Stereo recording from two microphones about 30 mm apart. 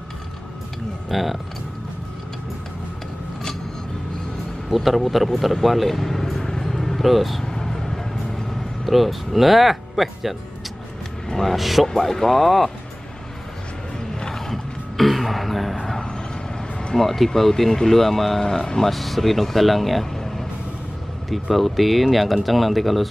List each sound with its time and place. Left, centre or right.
1.1 s speech: centre
4.7 s speech: centre
6.6 s a sound: centre
7.5 s vehicle: centre
8.8 s speech: centre
11.4 s speech: centre
11.9 s speech: centre
14.2 s music: centre
15.0 s a sound: centre
16.9 s speech: centre
18.4 s speech: centre
18.9 s speech: centre